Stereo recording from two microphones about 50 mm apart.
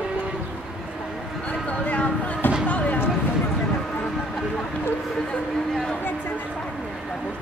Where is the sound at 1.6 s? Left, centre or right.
Left.